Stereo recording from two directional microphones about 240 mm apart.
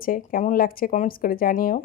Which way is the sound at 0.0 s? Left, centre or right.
Left.